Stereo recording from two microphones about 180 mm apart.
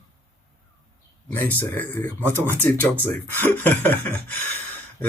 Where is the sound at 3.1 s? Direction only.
10° left (ahead or behind).